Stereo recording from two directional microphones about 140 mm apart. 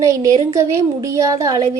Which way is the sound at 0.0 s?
25° right (ahead or behind).